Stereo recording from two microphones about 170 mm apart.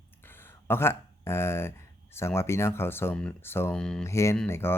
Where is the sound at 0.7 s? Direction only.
15° left (ahead or behind).